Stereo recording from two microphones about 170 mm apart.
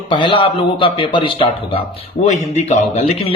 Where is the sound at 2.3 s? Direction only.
45° left (ahead or behind).